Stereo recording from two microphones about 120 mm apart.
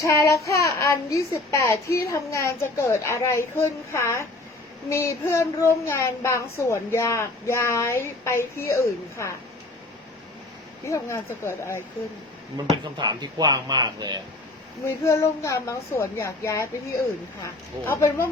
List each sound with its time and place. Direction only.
0.0 s speech: 25° left (ahead or behind)
10.8 s speech: 25° left (ahead or behind)
12.5 s speech: 35° right (ahead or behind)
14.8 s speech: 25° left (ahead or behind)